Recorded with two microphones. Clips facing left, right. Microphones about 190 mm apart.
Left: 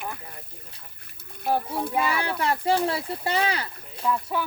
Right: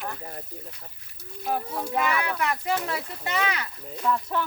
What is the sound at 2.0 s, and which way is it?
Speech, 30° left (ahead or behind).